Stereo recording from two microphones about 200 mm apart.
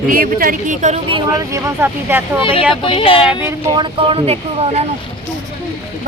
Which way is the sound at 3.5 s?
20° right (ahead or behind).